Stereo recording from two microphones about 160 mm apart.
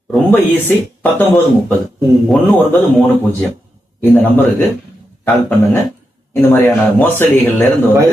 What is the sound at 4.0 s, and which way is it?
Speech, 10° left (ahead or behind).